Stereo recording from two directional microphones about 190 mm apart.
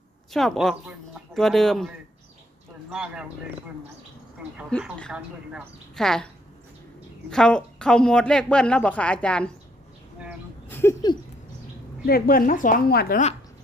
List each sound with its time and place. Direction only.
0.3 s a woman's voice: centre (ahead or behind)
4.7 s a woman's voice: 5° left (ahead or behind)
7.3 s a woman's voice: 5° left (ahead or behind)
10.7 s a sound: 10° left (ahead or behind)
12.0 s a woman's voice: 50° left (ahead or behind)